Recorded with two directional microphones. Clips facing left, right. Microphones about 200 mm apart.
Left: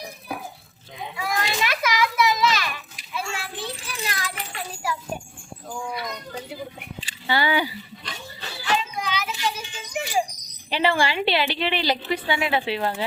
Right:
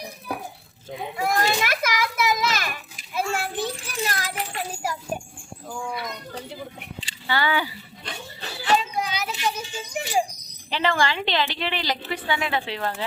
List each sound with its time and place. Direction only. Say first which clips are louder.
1.1 s children playing: right 4 dB; 45° right (ahead or behind)
7.3 s a woman's voice: left 2 dB; 15° left (ahead or behind)
8.4 s music: right 3 dB; 35° right (ahead or behind)
9.6 s a sound: even; 35° right (ahead or behind)
10.7 s a woman's voice: left 1 dB; 15° left (ahead or behind)